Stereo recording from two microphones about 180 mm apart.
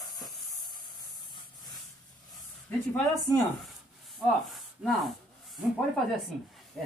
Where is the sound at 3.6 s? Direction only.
Centre (ahead or behind).